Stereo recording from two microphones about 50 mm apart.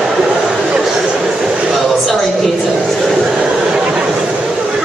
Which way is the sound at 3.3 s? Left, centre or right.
Centre.